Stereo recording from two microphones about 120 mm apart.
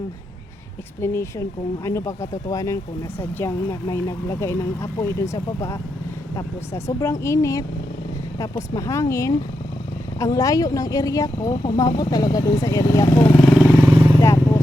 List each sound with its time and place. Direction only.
1.0 s speech: 20° left (ahead or behind)
13.3 s speech: centre (ahead or behind)
13.8 s vehicle: 40° right (ahead or behind)